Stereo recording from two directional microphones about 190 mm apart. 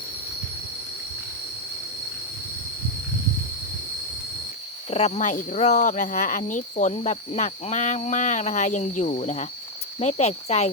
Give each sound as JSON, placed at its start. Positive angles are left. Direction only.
{"t": 4.9, "sound": "speech", "side_deg": 35}